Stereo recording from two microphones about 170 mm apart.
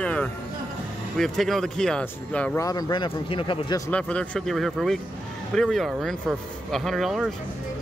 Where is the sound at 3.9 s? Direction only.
5° left (ahead or behind).